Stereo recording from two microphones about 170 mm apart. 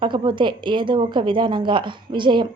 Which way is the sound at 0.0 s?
30° right (ahead or behind).